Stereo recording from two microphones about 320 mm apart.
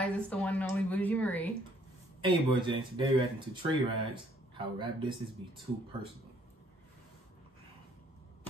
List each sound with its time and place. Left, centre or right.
0.0 s speech: centre
2.2 s speech: centre